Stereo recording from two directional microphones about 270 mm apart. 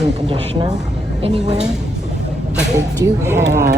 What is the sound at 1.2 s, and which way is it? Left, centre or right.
Speech, right.